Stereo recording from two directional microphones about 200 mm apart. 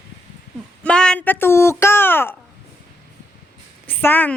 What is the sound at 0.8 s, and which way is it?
Speech, 5° left (ahead or behind).